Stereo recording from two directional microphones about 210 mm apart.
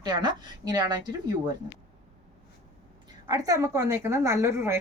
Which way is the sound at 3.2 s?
15° right (ahead or behind).